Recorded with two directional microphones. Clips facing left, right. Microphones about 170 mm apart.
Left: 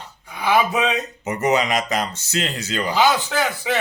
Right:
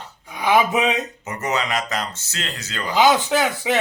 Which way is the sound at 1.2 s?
15° left (ahead or behind).